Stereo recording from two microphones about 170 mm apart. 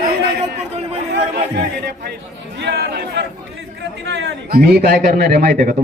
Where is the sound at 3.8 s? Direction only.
90° right.